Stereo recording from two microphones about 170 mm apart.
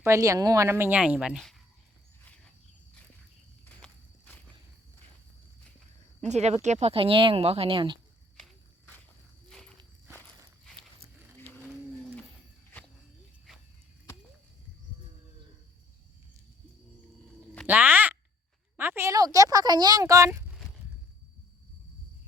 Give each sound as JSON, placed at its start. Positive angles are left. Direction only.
{"t": 0.0, "sound": "a woman's voice", "side_deg": -15}
{"t": 2.2, "sound": "a sound", "side_deg": 5}
{"t": 3.7, "sound": "walk", "side_deg": 5}
{"t": 6.2, "sound": "speech", "side_deg": -40}
{"t": 9.5, "sound": "walk", "side_deg": 5}
{"t": 17.7, "sound": "a sound", "side_deg": -10}
{"t": 18.8, "sound": "speech", "side_deg": -15}